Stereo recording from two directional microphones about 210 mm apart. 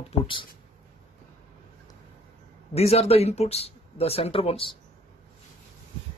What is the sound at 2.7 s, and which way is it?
Speech, 30° left (ahead or behind).